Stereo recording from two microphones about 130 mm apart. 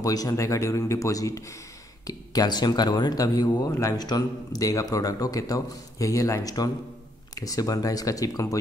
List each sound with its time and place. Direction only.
0.0 s speech: 30° left (ahead or behind)